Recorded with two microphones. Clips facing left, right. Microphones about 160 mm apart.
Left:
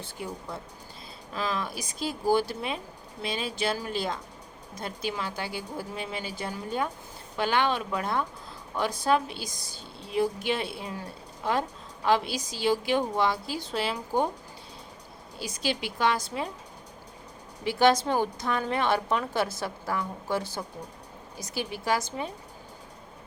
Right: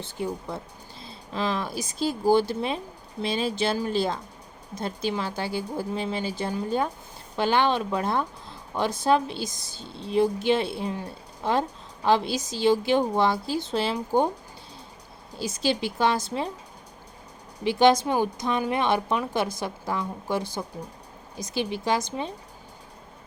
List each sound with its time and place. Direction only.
0.2 s speech: 30° right (ahead or behind)
12.0 s speech: 30° right (ahead or behind)
15.4 s speech: 30° right (ahead or behind)
17.6 s a woman's voice: 20° right (ahead or behind)